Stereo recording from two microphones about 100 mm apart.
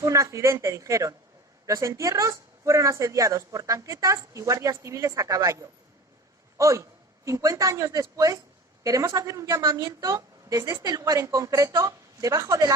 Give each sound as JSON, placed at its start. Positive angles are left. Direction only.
{"t": 0.0, "sound": "speech", "side_deg": -30}